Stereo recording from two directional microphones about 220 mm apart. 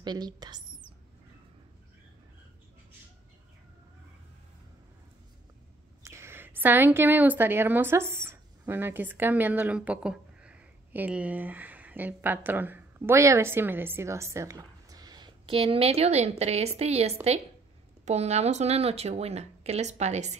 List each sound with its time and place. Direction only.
0.0 s speech: 20° right (ahead or behind)
6.0 s a woman's voice: 10° right (ahead or behind); by 20.3 s 30° right (ahead or behind)